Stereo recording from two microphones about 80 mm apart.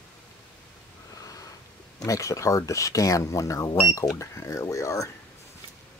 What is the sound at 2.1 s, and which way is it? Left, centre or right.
Speech, left.